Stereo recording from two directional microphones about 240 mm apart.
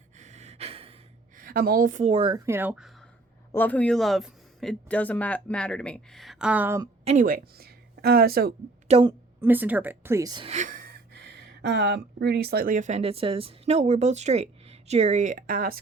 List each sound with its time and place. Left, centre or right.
0.2 s gasp: right
1.4 s a woman's voice: right
2.5 s speech: centre
3.5 s speech: centre
7.0 s speech: right
8.9 s a woman's voice: right
9.4 s speech: centre; by 15.8 s right